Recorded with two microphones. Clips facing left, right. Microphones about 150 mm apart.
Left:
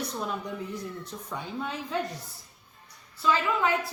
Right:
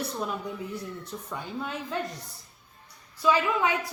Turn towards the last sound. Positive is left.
turn(degrees=-15)  # may be behind; listen again after turning